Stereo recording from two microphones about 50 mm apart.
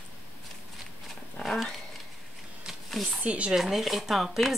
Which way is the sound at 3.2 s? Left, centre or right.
Right.